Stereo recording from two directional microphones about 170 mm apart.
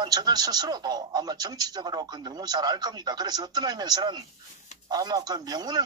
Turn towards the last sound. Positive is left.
turn(degrees=-25)  # may be behind; listen again after turning